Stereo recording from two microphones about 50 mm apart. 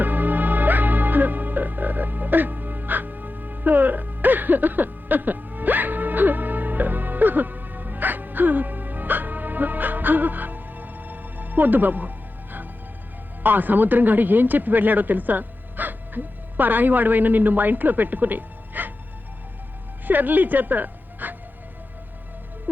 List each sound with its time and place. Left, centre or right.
0.0 s music: right
13.4 s speech: right
20.1 s a woman's voice: right